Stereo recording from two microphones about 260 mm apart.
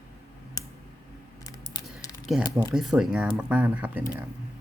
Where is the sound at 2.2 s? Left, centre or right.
Centre.